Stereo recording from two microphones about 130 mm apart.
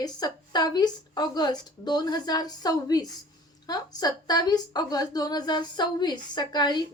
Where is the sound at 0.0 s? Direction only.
30° left (ahead or behind).